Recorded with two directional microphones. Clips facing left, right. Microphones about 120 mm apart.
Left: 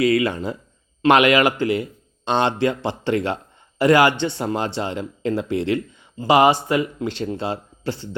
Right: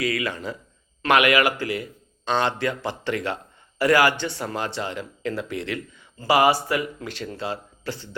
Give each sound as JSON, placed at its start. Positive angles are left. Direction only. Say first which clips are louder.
{"t": 0.0, "sound": "speech", "louder": "left 8 dB", "side_deg": 25}